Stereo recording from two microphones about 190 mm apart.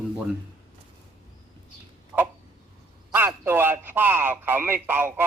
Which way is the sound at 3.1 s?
10° right (ahead or behind).